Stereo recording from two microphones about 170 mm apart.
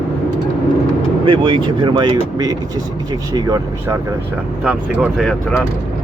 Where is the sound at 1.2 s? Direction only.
30° right (ahead or behind).